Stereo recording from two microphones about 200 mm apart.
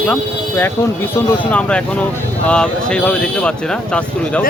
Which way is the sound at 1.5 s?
5° left (ahead or behind).